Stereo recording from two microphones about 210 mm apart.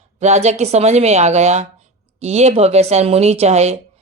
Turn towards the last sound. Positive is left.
turn(degrees=-30)  # may be behind; listen again after turning